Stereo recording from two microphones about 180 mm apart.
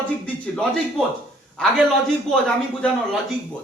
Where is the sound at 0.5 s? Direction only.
5° left (ahead or behind).